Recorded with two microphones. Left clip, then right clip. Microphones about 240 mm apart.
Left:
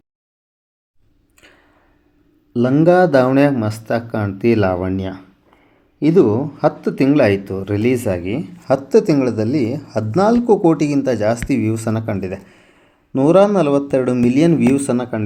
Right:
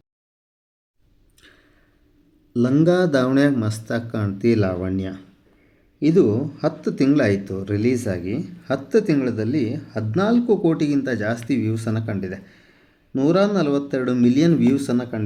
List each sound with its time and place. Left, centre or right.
2.5 s speech: centre